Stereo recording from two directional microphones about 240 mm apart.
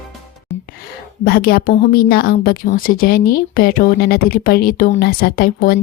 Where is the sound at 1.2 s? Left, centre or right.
Left.